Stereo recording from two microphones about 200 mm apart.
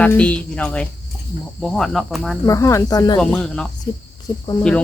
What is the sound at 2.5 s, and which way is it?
Speech, 15° left (ahead or behind).